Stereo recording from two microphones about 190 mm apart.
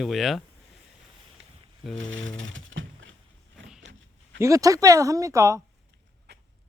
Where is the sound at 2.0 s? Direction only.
90° right.